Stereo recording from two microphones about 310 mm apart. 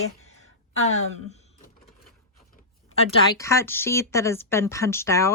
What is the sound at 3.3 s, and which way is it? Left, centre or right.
Speech, centre.